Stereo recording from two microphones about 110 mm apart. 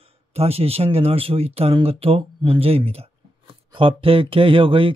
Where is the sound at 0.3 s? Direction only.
65° right (ahead or behind).